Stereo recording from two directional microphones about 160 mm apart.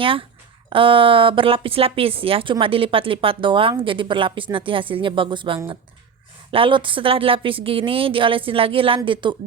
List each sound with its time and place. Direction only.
0.0 s a woman's voice: 35° right (ahead or behind)